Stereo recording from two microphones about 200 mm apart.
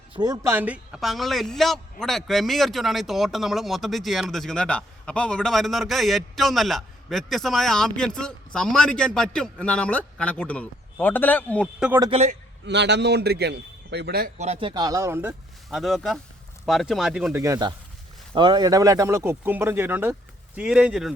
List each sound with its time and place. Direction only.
0.2 s a man's voice: 15° right (ahead or behind); by 11.7 s 5° left (ahead or behind)
12.1 s a man's voice: 35° right (ahead or behind)
12.6 s a man's voice: 60° right (ahead or behind)
14.3 s a man's voice: 30° right (ahead or behind); by 17.3 s 5° right (ahead or behind)
17.3 s a man's voice: 15° right (ahead or behind)